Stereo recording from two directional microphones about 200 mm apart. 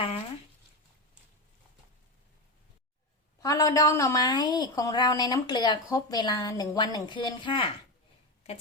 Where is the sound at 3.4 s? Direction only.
15° left (ahead or behind).